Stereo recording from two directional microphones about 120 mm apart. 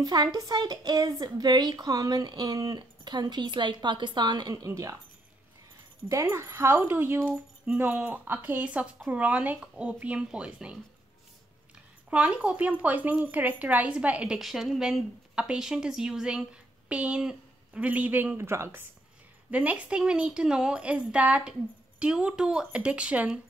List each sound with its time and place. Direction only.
0.0 s speech: 35° right (ahead or behind)
6.0 s speech: 25° right (ahead or behind)
12.1 s speech: 10° right (ahead or behind)